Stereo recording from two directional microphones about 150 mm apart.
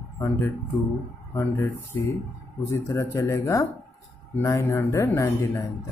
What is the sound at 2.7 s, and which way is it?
Speech, 20° left (ahead or behind).